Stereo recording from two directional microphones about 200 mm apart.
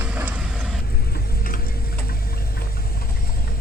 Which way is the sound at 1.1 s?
45° left (ahead or behind).